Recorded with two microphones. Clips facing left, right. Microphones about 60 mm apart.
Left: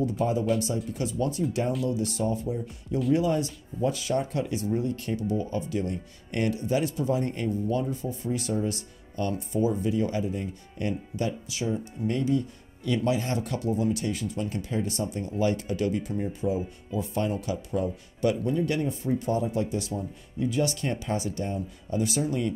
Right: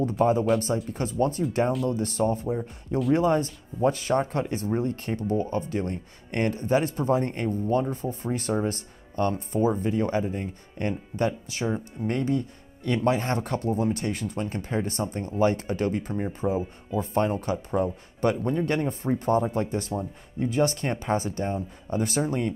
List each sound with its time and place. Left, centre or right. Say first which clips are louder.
0.0 s speech: right 4 dB; right